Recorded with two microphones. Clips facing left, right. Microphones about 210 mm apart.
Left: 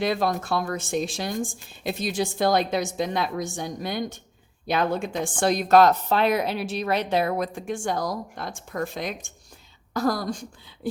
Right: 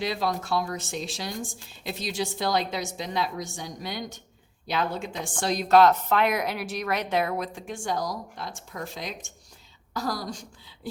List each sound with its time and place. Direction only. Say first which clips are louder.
0.0 s a woman's voice: left 4 dB; 50° left (ahead or behind)